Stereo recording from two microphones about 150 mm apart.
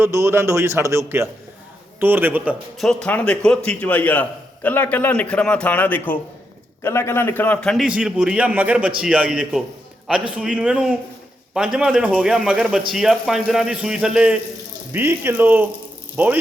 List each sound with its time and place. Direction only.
0.0 s a man's voice: 20° right (ahead or behind)
2.7 s a man's voice: 5° left (ahead or behind)
7.9 s a man's voice: 5° right (ahead or behind)